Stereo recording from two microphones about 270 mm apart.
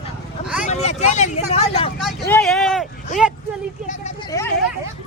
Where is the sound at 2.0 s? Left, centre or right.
Centre.